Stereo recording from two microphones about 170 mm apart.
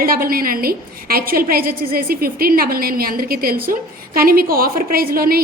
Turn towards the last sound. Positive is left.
turn(degrees=-60)  # may be behind; listen again after turning